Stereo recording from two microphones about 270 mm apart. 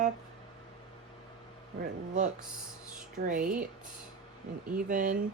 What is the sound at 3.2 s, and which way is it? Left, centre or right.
Speech, right.